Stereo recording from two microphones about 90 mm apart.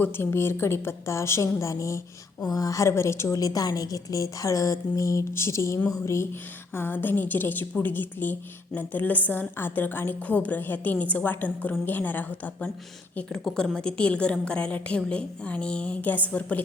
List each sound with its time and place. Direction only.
0.0 s a woman's voice: 25° left (ahead or behind)
3.4 s a woman's voice: 45° left (ahead or behind); by 12.4 s 20° left (ahead or behind)
13.7 s a woman's voice: 10° left (ahead or behind)